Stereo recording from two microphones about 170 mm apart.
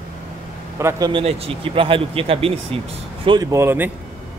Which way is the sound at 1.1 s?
35° right (ahead or behind).